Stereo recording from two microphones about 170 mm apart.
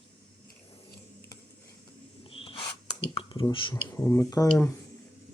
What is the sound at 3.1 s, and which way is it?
Speech, 30° left (ahead or behind).